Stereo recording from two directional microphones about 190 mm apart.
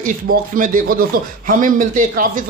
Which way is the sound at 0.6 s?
50° right (ahead or behind).